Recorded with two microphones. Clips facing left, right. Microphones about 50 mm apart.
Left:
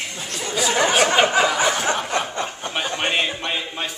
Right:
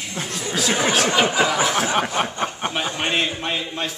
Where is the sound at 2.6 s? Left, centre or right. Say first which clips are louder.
Right 4 dB; right.